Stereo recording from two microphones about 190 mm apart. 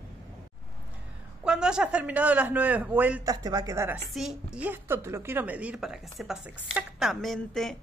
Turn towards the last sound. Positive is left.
turn(degrees=0)  # may be behind; listen again after turning